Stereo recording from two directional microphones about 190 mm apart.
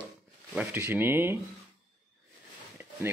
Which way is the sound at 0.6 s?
10° right (ahead or behind).